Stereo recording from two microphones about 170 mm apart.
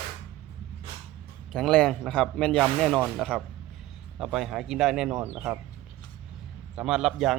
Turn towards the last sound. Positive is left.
turn(degrees=0)  # may be behind; listen again after turning